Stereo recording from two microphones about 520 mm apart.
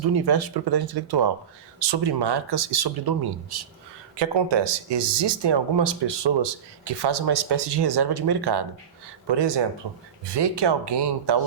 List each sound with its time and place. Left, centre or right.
0.0 s speech: right